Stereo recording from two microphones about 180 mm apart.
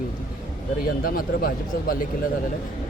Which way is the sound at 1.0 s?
55° left (ahead or behind).